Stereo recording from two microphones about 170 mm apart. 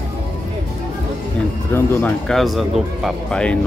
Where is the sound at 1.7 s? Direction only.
10° left (ahead or behind).